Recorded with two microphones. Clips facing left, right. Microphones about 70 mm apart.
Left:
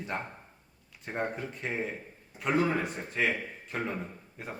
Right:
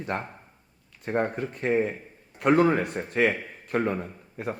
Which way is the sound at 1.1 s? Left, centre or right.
Right.